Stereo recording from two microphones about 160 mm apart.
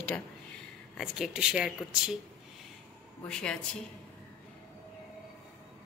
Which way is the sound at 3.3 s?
5° left (ahead or behind).